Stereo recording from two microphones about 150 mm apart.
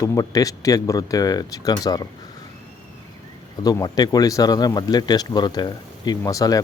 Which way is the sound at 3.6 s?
25° left (ahead or behind).